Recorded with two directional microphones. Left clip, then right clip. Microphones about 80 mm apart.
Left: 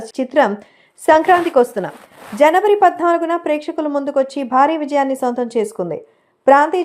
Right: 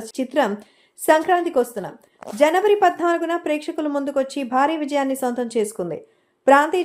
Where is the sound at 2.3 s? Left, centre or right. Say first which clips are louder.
Left 4 dB; left.